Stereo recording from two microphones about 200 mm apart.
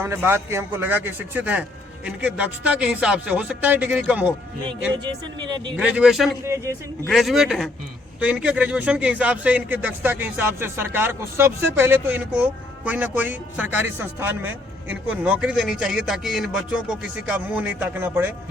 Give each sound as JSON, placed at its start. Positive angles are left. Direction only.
{"t": 0.0, "sound": "a man's voice", "side_deg": -10}
{"t": 5.0, "sound": "speech", "side_deg": -20}
{"t": 5.7, "sound": "speech", "side_deg": -5}
{"t": 6.4, "sound": "a man's voice", "side_deg": -15}
{"t": 7.1, "sound": "a man's voice", "side_deg": 0}